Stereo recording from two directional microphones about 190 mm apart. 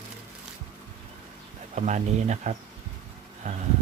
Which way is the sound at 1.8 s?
40° right (ahead or behind).